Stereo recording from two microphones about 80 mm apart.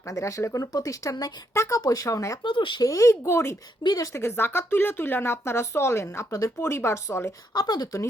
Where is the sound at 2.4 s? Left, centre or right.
Left.